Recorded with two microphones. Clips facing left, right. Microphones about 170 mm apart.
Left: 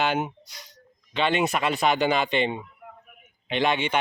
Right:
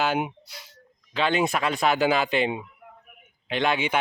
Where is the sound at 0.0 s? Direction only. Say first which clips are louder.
Even; 5° right (ahead or behind).